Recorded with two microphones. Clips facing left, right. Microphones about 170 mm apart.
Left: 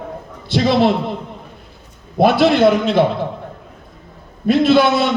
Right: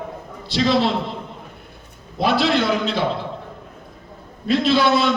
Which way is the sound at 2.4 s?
55° left (ahead or behind).